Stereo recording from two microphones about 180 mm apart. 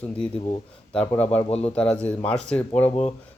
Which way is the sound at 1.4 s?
35° left (ahead or behind).